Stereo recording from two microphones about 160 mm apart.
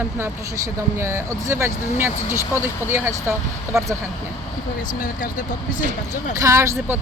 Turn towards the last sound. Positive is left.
turn(degrees=-20)  # may be behind; listen again after turning